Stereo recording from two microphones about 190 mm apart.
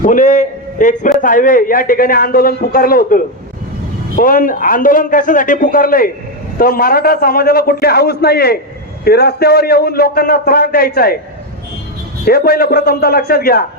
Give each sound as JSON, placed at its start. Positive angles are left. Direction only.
{"t": 0.0, "sound": "a man's voice", "side_deg": 45}
{"t": 12.2, "sound": "a man's voice", "side_deg": 55}